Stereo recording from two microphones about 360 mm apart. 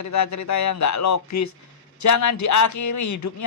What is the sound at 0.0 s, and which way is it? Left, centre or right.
Speech, left.